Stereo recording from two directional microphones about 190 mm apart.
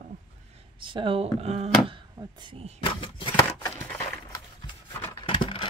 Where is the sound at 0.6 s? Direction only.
25° right (ahead or behind).